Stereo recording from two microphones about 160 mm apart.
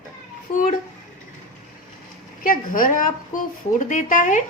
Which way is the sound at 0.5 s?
55° left (ahead or behind).